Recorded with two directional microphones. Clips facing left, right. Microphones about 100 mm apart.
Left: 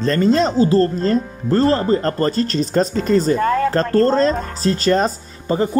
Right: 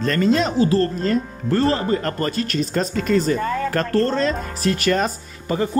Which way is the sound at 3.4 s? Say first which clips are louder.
Left 6 dB; 55° left (ahead or behind).